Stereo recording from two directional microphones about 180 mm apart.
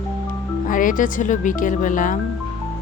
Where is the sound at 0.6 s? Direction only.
45° left (ahead or behind).